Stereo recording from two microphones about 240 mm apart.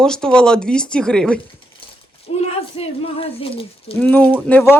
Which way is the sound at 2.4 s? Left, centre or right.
Left.